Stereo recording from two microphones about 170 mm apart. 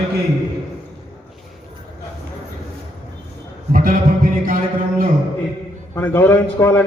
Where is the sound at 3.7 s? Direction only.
55° right (ahead or behind).